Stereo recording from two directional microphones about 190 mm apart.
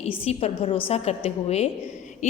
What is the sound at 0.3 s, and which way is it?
A woman's voice, 30° left (ahead or behind).